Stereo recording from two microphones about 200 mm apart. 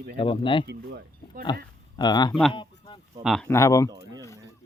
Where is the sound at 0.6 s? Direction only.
55° right (ahead or behind).